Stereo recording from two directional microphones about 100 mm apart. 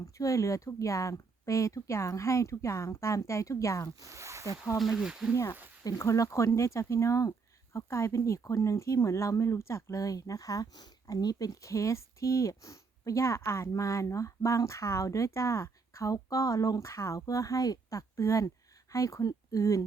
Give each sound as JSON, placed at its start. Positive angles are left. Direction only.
{"t": 0.0, "sound": "speech", "side_deg": 35}
{"t": 4.0, "sound": "speech", "side_deg": -30}
{"t": 4.4, "sound": "speech", "side_deg": 30}
{"t": 4.8, "sound": "speech", "side_deg": -5}
{"t": 5.3, "sound": "speech", "side_deg": 25}